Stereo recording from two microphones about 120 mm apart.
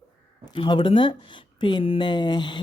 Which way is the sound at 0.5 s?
40° left (ahead or behind).